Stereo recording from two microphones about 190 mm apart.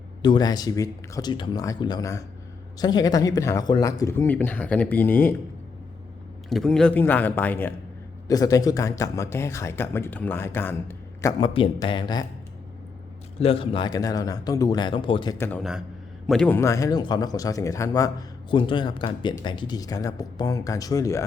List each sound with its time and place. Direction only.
0.2 s speech: 20° left (ahead or behind)
6.5 s speech: centre (ahead or behind)
11.3 s speech: 30° left (ahead or behind)
13.4 s speech: 30° left (ahead or behind)
16.2 s speech: 5° left (ahead or behind)